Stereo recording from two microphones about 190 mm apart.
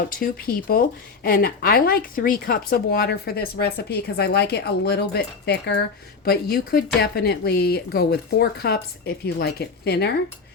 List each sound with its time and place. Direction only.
0.1 s speech: 50° left (ahead or behind)